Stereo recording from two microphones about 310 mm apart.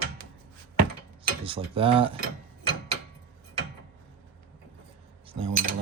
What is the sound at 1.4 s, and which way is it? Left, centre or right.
Mechanisms, centre.